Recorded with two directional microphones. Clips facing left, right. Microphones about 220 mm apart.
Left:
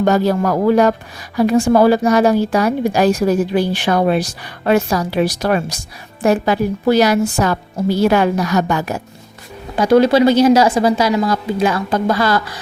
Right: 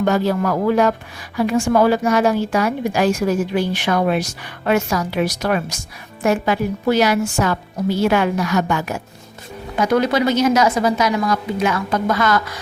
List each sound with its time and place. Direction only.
0.0 s speech: 40° left (ahead or behind)